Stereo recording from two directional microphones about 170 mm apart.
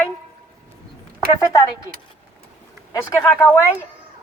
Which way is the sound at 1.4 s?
20° left (ahead or behind).